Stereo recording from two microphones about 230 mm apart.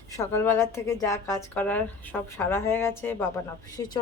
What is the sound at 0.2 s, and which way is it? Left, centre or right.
Speech, centre.